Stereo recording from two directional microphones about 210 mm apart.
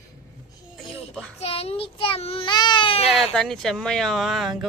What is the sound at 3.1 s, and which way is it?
Speech, centre (ahead or behind).